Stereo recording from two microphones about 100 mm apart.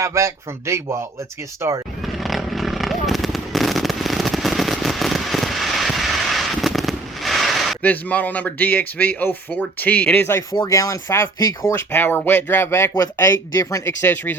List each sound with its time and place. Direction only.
0.0 s speech: 30° right (ahead or behind)
2.2 s fireworks: centre (ahead or behind)
7.8 s speech: 15° left (ahead or behind)
10.7 s speech: 30° left (ahead or behind)
11.7 s speech: 20° left (ahead or behind)